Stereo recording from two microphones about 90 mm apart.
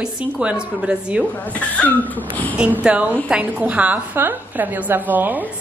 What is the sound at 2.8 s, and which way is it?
A woman's voice, 15° right (ahead or behind).